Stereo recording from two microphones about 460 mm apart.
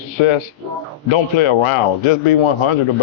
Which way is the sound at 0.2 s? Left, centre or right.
Left.